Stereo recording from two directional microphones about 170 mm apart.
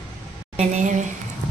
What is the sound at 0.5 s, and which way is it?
Speech, 45° right (ahead or behind).